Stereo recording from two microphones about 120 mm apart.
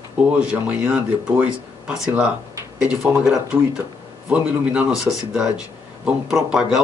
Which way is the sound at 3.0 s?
5° right (ahead or behind).